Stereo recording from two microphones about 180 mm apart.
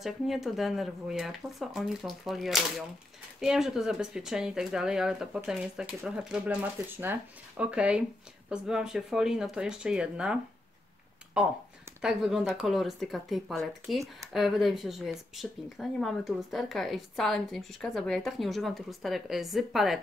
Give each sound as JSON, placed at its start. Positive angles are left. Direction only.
{"t": 0.0, "sound": "speech", "side_deg": 0}